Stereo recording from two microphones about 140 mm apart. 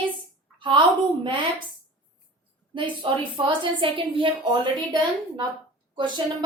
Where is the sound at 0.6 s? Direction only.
35° right (ahead or behind).